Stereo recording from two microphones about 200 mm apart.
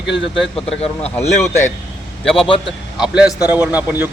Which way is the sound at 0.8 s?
30° left (ahead or behind).